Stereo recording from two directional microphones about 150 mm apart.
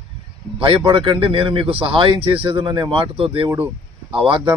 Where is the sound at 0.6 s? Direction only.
35° right (ahead or behind).